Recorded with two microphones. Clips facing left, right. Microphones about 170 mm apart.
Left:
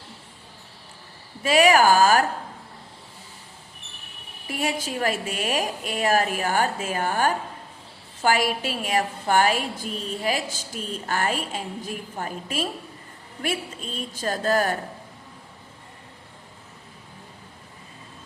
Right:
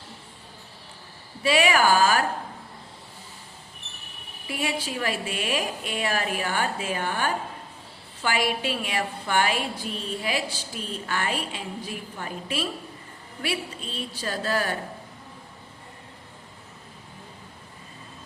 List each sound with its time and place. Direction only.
1.5 s a woman's voice: 40° left (ahead or behind)
4.4 s a woman's voice: 45° left (ahead or behind)